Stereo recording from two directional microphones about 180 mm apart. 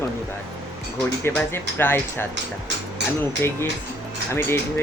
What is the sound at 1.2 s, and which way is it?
Speech, 10° left (ahead or behind).